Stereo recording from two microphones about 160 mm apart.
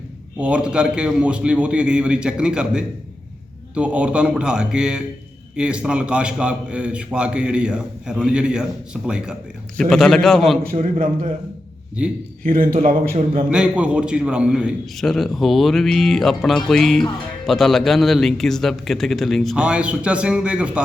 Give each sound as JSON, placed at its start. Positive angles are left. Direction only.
{"t": 0.3, "sound": "a man's voice", "side_deg": -5}
{"t": 10.6, "sound": "a man's voice", "side_deg": -60}
{"t": 12.0, "sound": "a man's voice", "side_deg": -5}
{"t": 12.5, "sound": "a man's voice", "side_deg": -55}
{"t": 13.5, "sound": "a man's voice", "side_deg": -5}